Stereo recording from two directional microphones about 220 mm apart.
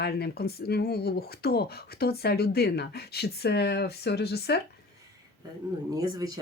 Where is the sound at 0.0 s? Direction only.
45° left (ahead or behind).